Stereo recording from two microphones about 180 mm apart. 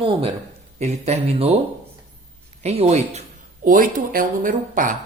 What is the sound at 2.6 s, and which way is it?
Speech, 35° right (ahead or behind).